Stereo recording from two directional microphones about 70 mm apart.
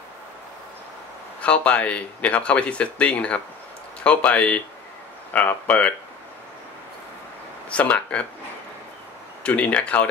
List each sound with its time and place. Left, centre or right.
1.4 s speech: centre
7.7 s speech: left
9.4 s speech: centre